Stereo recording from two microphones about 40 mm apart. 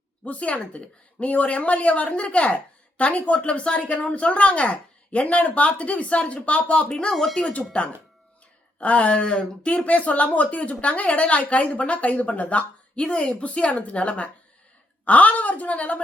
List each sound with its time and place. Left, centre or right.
0.3 s speech: left
6.8 s speech: centre
7.1 s speech: centre
7.7 s speech: left